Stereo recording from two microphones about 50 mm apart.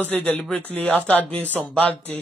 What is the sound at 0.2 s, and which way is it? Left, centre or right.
Speech, left.